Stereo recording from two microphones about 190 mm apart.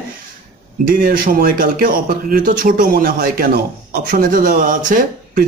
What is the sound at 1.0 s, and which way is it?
Speech, 50° right (ahead or behind).